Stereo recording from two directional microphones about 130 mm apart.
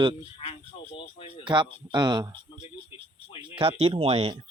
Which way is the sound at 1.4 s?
40° right (ahead or behind).